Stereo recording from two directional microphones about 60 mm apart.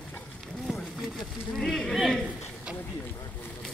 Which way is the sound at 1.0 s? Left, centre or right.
Centre.